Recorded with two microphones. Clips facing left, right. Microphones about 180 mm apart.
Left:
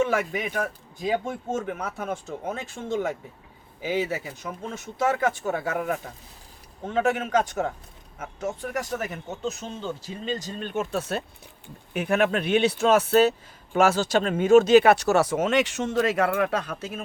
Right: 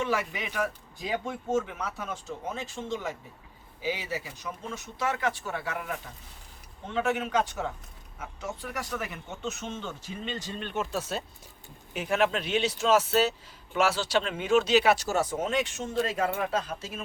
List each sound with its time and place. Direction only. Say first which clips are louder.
0.0 s speech: left 6 dB; 50° left (ahead or behind)